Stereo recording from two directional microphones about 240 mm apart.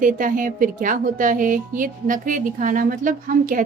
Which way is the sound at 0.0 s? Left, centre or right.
Right.